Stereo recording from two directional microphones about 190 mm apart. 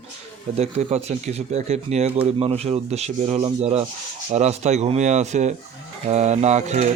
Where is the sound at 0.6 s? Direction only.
35° right (ahead or behind).